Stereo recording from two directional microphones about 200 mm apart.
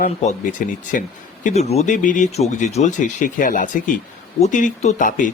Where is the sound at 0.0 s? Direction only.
35° left (ahead or behind).